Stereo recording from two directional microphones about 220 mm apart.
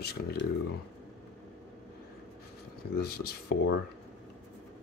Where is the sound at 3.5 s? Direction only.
50° left (ahead or behind).